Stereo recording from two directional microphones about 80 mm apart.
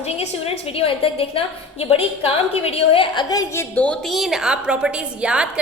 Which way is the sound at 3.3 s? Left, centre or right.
Left.